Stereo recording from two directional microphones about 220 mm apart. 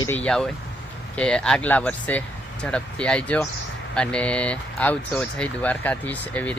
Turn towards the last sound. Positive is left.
turn(degrees=5)  # may be behind; listen again after turning